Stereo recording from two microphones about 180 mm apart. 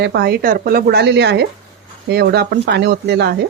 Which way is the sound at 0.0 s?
70° right (ahead or behind).